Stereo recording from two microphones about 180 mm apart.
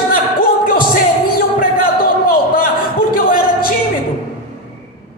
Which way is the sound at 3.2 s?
50° left (ahead or behind).